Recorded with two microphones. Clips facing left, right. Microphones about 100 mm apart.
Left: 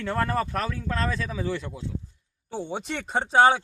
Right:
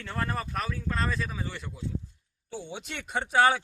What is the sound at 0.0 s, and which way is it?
Speech, 85° left.